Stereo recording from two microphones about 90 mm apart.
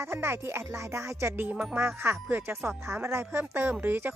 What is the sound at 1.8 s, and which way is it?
Speech, 30° right (ahead or behind).